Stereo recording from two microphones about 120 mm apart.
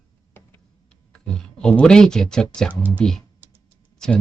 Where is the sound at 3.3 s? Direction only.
15° right (ahead or behind).